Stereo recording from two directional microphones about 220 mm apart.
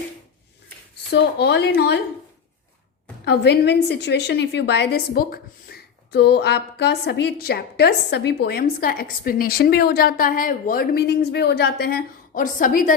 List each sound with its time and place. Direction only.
1.1 s a woman's voice: 50° left (ahead or behind)
3.2 s a woman's voice: 50° left (ahead or behind)